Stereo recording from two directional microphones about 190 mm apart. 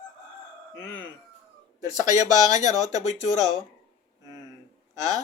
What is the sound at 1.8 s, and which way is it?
Speech, 20° right (ahead or behind).